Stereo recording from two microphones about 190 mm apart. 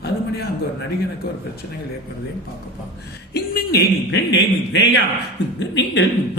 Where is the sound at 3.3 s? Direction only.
60° left (ahead or behind).